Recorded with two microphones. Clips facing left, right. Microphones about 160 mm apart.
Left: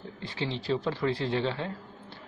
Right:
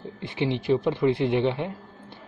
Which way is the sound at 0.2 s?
20° right (ahead or behind).